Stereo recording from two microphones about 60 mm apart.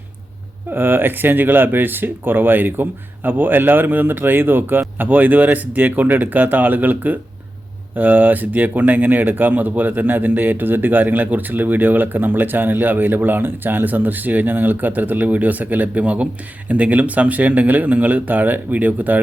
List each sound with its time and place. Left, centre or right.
0.7 s speech: right